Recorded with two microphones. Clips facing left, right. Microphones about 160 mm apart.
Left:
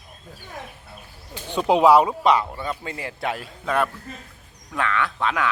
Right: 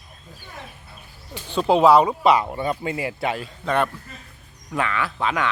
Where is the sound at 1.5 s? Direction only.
15° left (ahead or behind).